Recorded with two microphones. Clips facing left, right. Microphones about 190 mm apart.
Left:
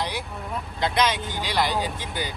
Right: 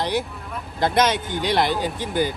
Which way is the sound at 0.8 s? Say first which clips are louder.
Right 4 dB; 50° right (ahead or behind).